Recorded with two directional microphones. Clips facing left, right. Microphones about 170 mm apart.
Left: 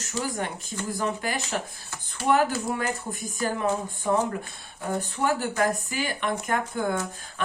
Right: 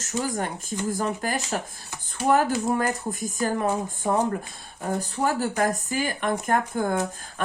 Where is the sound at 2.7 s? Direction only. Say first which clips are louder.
Right 4 dB; 45° right (ahead or behind).